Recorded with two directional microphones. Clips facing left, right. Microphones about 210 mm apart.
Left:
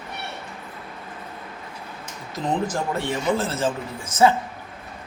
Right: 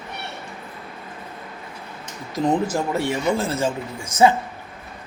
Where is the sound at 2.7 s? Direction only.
10° right (ahead or behind).